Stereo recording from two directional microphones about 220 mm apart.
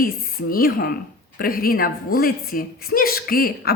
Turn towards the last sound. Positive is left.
turn(degrees=40)  # may be behind; listen again after turning